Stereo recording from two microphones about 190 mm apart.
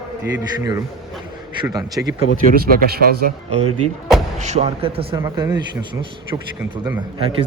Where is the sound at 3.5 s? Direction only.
35° right (ahead or behind).